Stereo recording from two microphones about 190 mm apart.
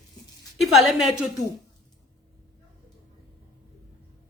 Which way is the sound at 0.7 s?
Centre (ahead or behind).